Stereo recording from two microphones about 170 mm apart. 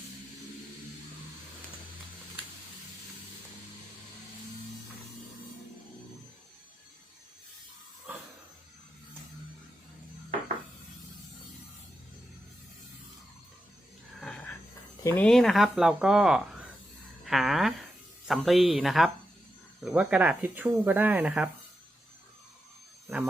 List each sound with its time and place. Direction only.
15.0 s speech: 10° left (ahead or behind); by 21.5 s 10° right (ahead or behind)